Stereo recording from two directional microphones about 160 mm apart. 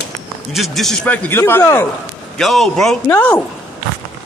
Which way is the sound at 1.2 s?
15° left (ahead or behind).